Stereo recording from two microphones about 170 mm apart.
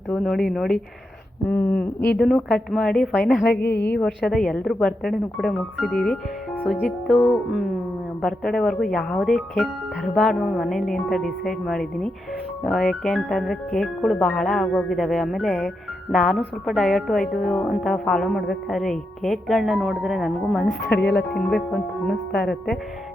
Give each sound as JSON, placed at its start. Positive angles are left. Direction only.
{"t": 0.1, "sound": "a woman's voice", "side_deg": 0}
{"t": 1.5, "sound": "a sound", "side_deg": 10}
{"t": 2.1, "sound": "a woman's voice", "side_deg": 0}
{"t": 3.4, "sound": "a woman's voice", "side_deg": 65}
{"t": 3.9, "sound": "a woman's voice", "side_deg": 5}
{"t": 20.8, "sound": "a woman's voice", "side_deg": 75}
{"t": 21.3, "sound": "a woman's voice", "side_deg": 0}